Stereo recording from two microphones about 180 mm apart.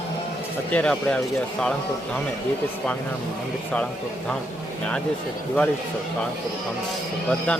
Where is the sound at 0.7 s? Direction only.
5° left (ahead or behind).